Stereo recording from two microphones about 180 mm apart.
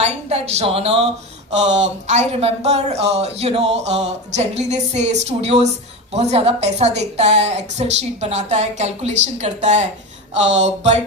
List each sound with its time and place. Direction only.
0.0 s speech: 35° right (ahead or behind)